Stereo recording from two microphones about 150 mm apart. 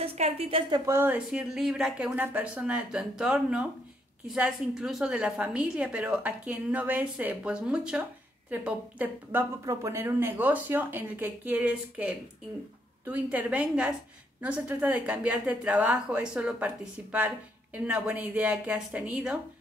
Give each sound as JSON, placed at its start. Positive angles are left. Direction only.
{"t": 0.0, "sound": "a woman's voice", "side_deg": -40}
{"t": 0.9, "sound": "a woman's voice", "side_deg": -10}